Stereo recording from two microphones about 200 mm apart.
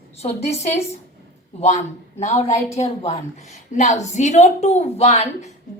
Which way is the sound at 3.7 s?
35° left (ahead or behind).